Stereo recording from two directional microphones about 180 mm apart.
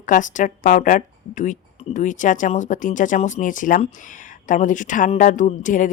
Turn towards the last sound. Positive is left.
turn(degrees=45)  # may be behind; listen again after turning